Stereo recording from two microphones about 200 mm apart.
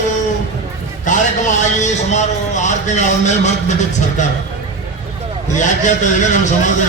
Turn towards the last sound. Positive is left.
turn(degrees=40)  # may be behind; listen again after turning